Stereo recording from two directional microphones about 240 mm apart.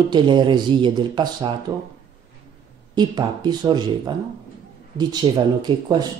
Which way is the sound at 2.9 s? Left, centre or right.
Centre.